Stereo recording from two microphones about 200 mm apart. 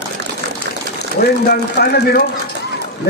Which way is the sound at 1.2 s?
50° left (ahead or behind).